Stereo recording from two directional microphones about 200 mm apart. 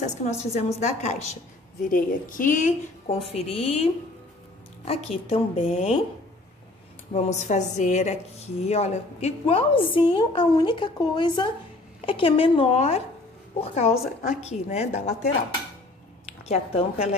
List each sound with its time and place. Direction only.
0.0 s a woman's voice: 35° left (ahead or behind)
7.2 s a woman's voice: 35° left (ahead or behind)
16.3 s a sound: 35° left (ahead or behind)